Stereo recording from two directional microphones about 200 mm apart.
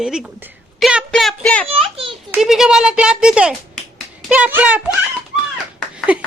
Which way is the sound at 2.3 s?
Centre (ahead or behind).